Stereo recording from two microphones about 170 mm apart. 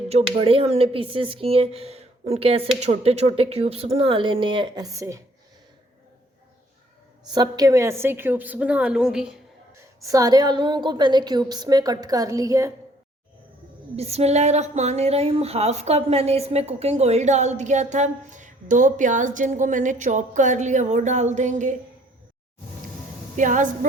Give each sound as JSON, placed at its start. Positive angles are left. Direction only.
{"t": 0.1, "sound": "speech", "side_deg": -35}
{"t": 7.3, "sound": "a woman's voice", "side_deg": -25}
{"t": 10.0, "sound": "a woman's voice", "side_deg": -20}
{"t": 13.9, "sound": "speech", "side_deg": -35}
{"t": 23.4, "sound": "speech", "side_deg": -50}